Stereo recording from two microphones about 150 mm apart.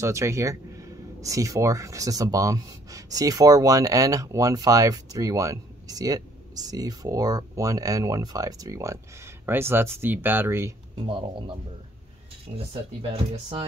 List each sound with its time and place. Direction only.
0.0 s speech: 20° right (ahead or behind)
11.1 s speech: 35° right (ahead or behind)
13.0 s speech: 35° right (ahead or behind)